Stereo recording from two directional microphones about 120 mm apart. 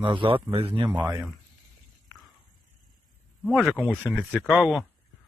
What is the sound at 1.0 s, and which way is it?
Speech, 25° right (ahead or behind).